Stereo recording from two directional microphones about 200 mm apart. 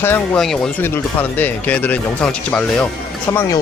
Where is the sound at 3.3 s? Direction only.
15° left (ahead or behind).